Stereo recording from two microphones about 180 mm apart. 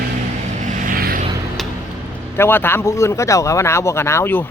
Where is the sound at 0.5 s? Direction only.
45° right (ahead or behind).